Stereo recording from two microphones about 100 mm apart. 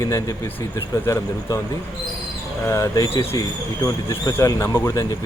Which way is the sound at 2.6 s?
30° left (ahead or behind).